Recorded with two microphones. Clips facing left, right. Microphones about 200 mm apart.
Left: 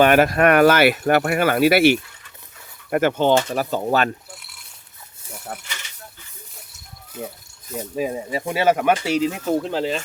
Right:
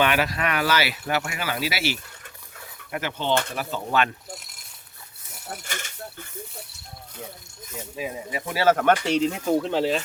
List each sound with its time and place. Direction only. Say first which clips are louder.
0.0 s speech: left 9 dB; 50° left (ahead or behind)
4.3 s cutlery: right 3 dB; 40° right (ahead or behind)
5.5 s a sound: even; 45° right (ahead or behind)
7.2 s speech: left 7 dB; 50° left (ahead or behind)
7.7 s speech: left 8 dB; 40° left (ahead or behind)
8.4 s speech: left 1 dB; 20° left (ahead or behind); by 10.0 s centre (ahead or behind)